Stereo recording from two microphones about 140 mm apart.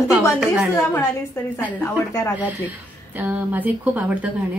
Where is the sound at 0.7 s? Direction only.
20° left (ahead or behind).